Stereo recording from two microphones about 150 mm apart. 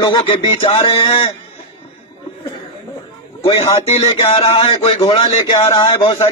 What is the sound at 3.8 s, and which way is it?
Speech, 40° left (ahead or behind).